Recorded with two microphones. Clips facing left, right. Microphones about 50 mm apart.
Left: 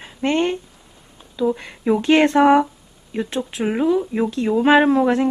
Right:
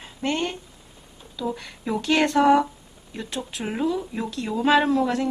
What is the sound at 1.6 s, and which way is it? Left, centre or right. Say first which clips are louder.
Speech: left 8 dB; left.